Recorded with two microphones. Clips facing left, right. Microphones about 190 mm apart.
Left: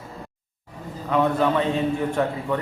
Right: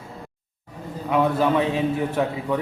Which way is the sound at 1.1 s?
5° right (ahead or behind).